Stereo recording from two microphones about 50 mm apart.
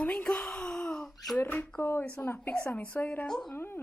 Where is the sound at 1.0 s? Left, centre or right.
Centre.